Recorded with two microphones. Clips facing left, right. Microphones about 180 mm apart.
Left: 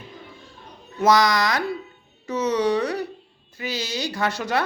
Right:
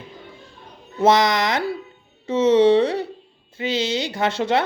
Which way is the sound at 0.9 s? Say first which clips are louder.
Right 2 dB; 25° right (ahead or behind).